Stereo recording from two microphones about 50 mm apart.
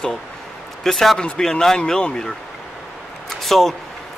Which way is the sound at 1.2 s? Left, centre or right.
Centre.